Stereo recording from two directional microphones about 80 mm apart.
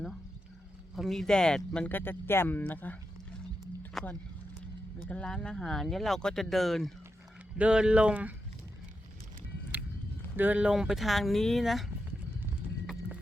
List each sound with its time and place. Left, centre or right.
0.9 s speech: centre
1.9 s speech: left
4.0 s speech: centre
7.6 s speech: centre
10.3 s speech: right; by 11.9 s centre